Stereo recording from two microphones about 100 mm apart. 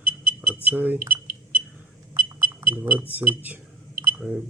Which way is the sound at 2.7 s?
20° right (ahead or behind).